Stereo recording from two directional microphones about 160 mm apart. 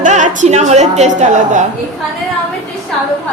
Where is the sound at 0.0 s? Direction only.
50° right (ahead or behind).